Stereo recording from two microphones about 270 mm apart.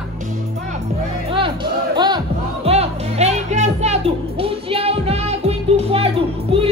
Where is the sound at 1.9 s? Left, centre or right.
Centre.